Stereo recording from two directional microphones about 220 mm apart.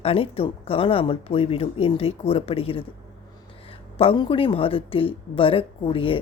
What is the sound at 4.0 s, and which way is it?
Speech, 25° left (ahead or behind).